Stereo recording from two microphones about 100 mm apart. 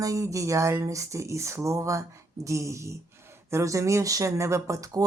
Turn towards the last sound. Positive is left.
turn(degrees=-35)  # may be behind; listen again after turning